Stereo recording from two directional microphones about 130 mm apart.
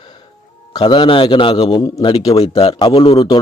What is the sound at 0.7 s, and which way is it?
A man's voice, 35° left (ahead or behind).